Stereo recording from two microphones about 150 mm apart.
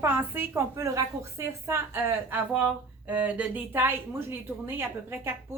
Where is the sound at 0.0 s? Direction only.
15° right (ahead or behind).